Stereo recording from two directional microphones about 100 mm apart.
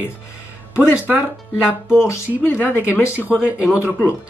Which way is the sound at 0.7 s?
15° right (ahead or behind).